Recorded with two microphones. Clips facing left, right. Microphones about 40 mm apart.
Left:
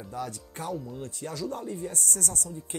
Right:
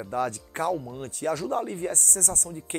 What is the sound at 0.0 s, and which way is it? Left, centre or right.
Speech, right.